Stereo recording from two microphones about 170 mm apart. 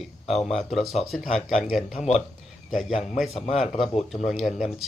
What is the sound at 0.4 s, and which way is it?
Speech, centre (ahead or behind).